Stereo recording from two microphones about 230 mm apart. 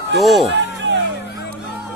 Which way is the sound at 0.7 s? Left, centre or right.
Right.